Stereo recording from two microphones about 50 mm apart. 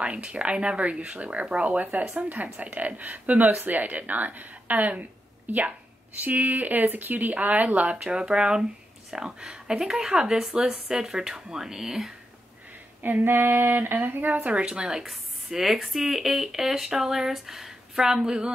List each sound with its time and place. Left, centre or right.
0.0 s speech: right
8.0 s speech: centre
13.0 s speech: right
14.5 s speech: centre